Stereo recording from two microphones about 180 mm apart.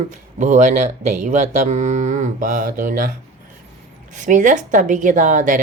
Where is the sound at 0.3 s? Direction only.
40° right (ahead or behind).